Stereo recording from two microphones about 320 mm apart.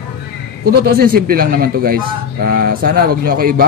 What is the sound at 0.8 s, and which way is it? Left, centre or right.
A man's voice, right.